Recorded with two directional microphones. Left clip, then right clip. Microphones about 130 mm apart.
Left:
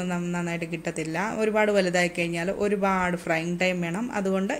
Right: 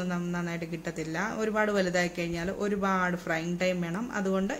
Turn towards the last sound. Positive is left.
turn(degrees=20)  # may be behind; listen again after turning